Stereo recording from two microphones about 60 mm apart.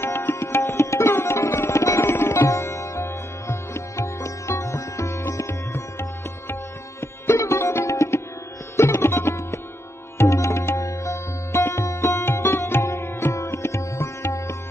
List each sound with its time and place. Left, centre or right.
0.0 s tabla: left
6.5 s sitar: left
8.7 s music: left